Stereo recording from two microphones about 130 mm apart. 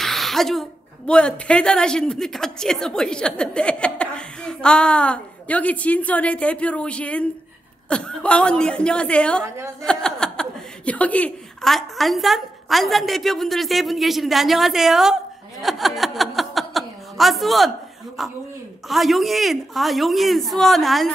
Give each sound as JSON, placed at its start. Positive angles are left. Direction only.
{"t": 0.0, "sound": "a woman's voice", "side_deg": 0}
{"t": 9.4, "sound": "a woman's voice", "side_deg": -20}
{"t": 9.8, "sound": "a woman's voice", "side_deg": 5}